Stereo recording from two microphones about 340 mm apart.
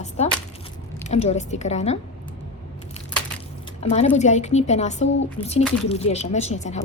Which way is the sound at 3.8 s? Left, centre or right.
Centre.